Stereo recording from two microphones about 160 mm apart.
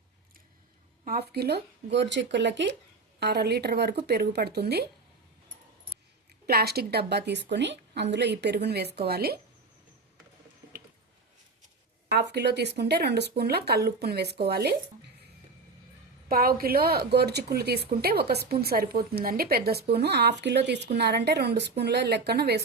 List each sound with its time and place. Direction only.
1.0 s a woman's voice: 75° right (ahead or behind)
6.4 s a woman's voice: 80° right
9.0 s speech: 80° right
12.1 s a woman's voice: 90° right
16.3 s a woman's voice: 65° right (ahead or behind); by 22.6 s 90° right